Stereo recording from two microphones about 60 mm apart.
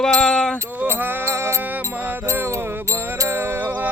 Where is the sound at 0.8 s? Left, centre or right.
Right.